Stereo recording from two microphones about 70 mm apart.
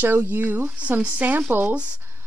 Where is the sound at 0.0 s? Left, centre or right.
Right.